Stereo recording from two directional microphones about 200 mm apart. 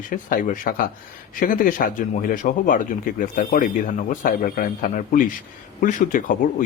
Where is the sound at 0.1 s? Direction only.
40° left (ahead or behind).